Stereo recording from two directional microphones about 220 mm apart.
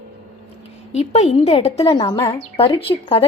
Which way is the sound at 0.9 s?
30° left (ahead or behind).